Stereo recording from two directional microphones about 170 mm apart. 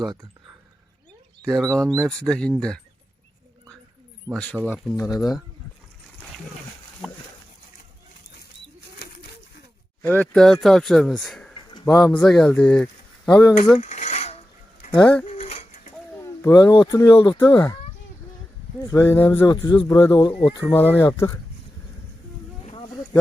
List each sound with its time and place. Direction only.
1.5 s speech: centre (ahead or behind)
4.3 s speech: 5° left (ahead or behind); by 5.4 s 20° left (ahead or behind)
10.0 s speech: 10° left (ahead or behind)
11.7 s a sound: 20° left (ahead or behind)
12.1 s speech: 5° left (ahead or behind)
13.7 s cutlery: 40° left (ahead or behind)
15.3 s pigeon: 40° left (ahead or behind)
16.2 s speech: 20° left (ahead or behind)
18.9 s speech: 15° left (ahead or behind)
19.9 s speech: 15° left (ahead or behind)
20.7 s speech: 10° left (ahead or behind)